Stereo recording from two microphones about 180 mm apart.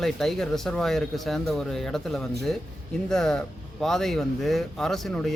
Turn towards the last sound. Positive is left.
turn(degrees=0)  # may be behind; listen again after turning